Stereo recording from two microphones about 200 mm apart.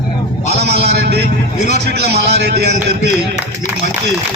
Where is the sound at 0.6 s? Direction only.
55° right (ahead or behind).